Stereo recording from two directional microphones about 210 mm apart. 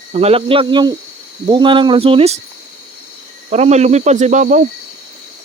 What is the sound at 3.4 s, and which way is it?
Speech, 30° right (ahead or behind).